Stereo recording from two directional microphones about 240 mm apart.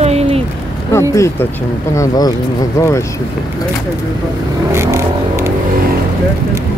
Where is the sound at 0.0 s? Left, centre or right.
Right.